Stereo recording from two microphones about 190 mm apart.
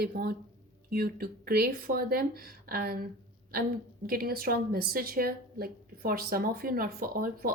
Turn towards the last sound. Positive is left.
turn(degrees=-50)  # may be behind; listen again after turning